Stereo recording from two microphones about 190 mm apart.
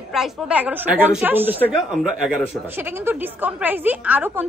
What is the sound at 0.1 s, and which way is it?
A woman's voice, 5° right (ahead or behind).